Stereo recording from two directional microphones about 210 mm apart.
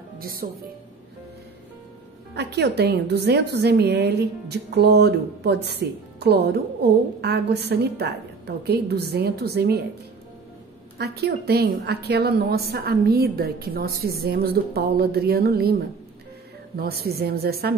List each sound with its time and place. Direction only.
0.2 s speech: 45° right (ahead or behind)
2.3 s a woman's voice: 55° right (ahead or behind)
11.0 s a woman's voice: 50° right (ahead or behind)
16.7 s a woman's voice: 45° right (ahead or behind)